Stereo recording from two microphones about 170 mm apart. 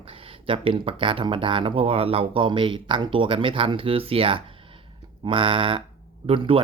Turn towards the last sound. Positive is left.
turn(degrees=-30)  # may be behind; listen again after turning